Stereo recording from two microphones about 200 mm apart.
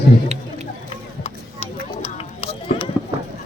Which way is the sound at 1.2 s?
30° left (ahead or behind).